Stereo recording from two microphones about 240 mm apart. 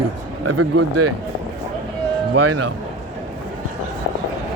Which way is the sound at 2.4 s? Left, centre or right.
Right.